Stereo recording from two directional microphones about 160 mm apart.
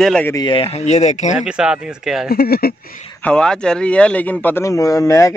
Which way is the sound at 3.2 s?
5° left (ahead or behind).